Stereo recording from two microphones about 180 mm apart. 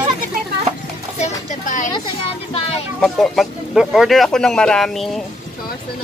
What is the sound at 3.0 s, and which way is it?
Speech, centre (ahead or behind).